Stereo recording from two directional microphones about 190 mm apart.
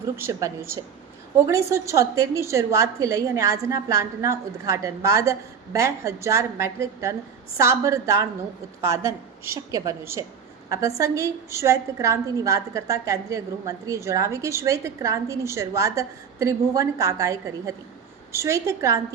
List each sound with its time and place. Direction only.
0.2 s a woman's voice: 15° right (ahead or behind)